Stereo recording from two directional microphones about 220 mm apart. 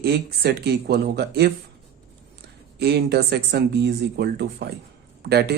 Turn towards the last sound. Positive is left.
turn(degrees=-50)  # may be behind; listen again after turning